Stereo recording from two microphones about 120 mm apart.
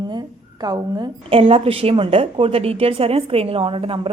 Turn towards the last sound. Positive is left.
turn(degrees=-50)  # may be behind; listen again after turning